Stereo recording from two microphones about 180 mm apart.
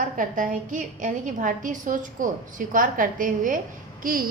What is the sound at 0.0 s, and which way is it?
A woman's voice, 45° right (ahead or behind).